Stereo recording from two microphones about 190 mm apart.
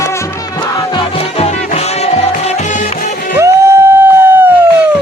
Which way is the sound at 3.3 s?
15° right (ahead or behind).